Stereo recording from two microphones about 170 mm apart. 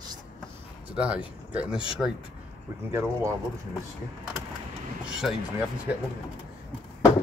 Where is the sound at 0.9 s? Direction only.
10° right (ahead or behind).